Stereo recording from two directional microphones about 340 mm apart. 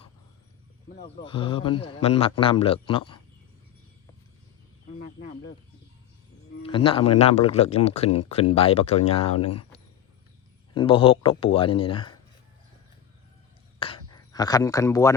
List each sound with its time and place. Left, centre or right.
0.9 s a man's voice: centre
6.6 s a man's voice: centre
10.8 s a man's voice: centre
13.7 s a sound: centre